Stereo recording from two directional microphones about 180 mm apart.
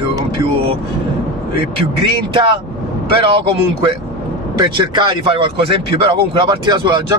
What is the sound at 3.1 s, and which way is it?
Speech, 30° right (ahead or behind).